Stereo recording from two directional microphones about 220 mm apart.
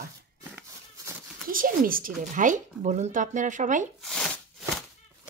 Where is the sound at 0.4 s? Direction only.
10° right (ahead or behind).